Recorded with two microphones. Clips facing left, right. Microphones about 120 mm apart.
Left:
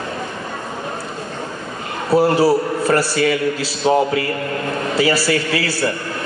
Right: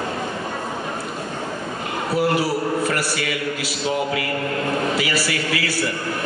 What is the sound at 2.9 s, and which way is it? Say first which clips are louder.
A man's voice: left 8 dB; 30° left (ahead or behind).